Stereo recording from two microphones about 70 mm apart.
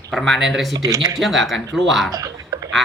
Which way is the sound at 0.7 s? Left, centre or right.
Right.